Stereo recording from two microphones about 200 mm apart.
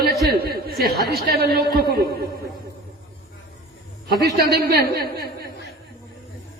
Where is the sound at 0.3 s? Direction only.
50° right (ahead or behind).